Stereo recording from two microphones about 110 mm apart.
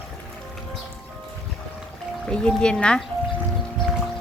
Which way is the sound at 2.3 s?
10° left (ahead or behind).